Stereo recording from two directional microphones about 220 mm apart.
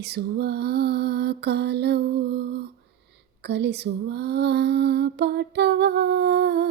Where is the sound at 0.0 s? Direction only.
50° right (ahead or behind).